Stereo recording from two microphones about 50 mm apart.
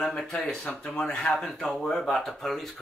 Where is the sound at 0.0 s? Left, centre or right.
Centre.